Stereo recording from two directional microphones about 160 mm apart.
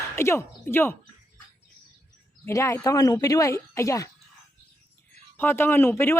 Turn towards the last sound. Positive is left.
turn(degrees=15)  # may be behind; listen again after turning